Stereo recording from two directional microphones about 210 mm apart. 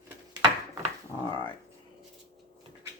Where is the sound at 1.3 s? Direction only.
20° left (ahead or behind).